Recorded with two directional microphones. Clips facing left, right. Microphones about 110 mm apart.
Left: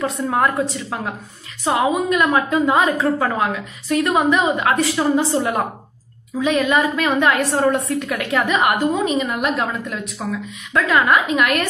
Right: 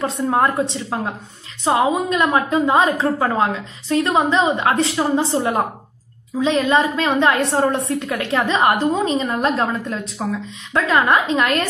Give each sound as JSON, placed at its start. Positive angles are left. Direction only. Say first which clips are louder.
{"t": 0.0, "sound": "a woman's voice", "louder": "right 1 dB", "side_deg": -30}